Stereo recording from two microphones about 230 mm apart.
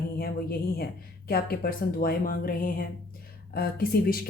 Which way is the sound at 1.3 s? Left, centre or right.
Left.